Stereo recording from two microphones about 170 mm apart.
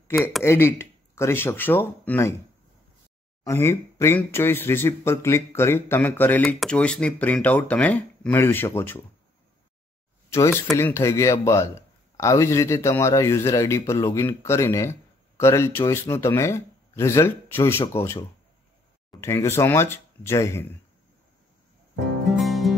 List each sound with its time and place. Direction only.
0.4 s speech: 15° left (ahead or behind)
3.4 s speech: 15° left (ahead or behind)
10.3 s speech: 15° left (ahead or behind)
19.2 s speech: 15° left (ahead or behind)
22.2 s music: centre (ahead or behind)